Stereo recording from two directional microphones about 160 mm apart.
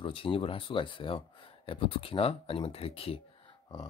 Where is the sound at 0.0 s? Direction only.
35° left (ahead or behind).